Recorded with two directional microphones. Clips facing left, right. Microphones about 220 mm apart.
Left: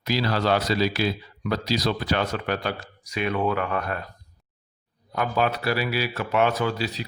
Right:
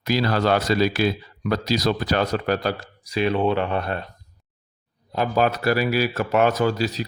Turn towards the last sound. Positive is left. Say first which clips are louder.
# right 4 dB
turn(degrees=-45)  # may be behind; listen again after turning